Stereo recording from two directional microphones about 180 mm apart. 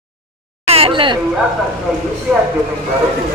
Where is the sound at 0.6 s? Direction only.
30° right (ahead or behind).